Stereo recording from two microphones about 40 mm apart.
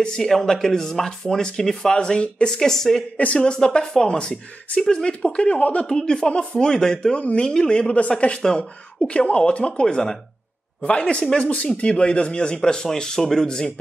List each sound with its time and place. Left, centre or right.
0.0 s speech: centre
7.2 s speech: left; by 13.5 s centre